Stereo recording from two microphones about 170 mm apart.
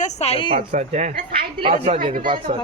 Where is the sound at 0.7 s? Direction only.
40° right (ahead or behind).